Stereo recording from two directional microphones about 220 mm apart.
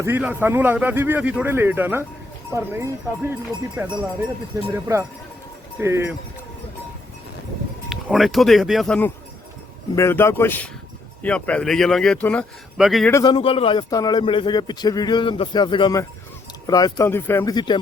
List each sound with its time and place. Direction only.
0.0 s speech: 10° right (ahead or behind)
5.8 s speech: 10° right (ahead or behind)
7.9 s speech: centre (ahead or behind)
13.1 s a man's voice: 15° left (ahead or behind)